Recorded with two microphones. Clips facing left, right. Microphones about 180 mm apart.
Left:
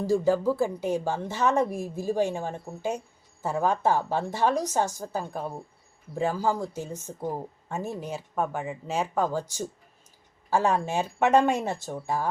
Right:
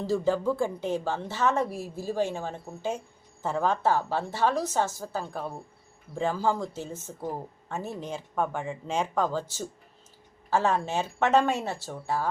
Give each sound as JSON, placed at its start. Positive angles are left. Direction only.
{"t": 0.0, "sound": "speech", "side_deg": 10}